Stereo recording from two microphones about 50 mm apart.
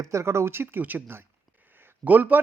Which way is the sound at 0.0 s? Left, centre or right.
Right.